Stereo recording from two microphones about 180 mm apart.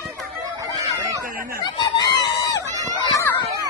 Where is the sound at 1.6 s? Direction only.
25° left (ahead or behind).